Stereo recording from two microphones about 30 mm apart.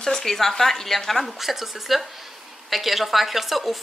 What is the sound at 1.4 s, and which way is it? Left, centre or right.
A woman's voice, centre.